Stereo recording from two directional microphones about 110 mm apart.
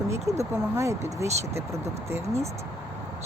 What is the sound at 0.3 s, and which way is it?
Speech, 25° right (ahead or behind).